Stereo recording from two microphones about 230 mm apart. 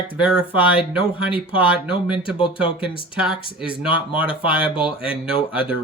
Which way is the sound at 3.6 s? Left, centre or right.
Centre.